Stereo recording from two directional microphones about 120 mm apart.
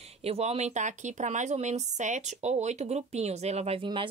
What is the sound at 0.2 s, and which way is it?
Speech, 60° right (ahead or behind).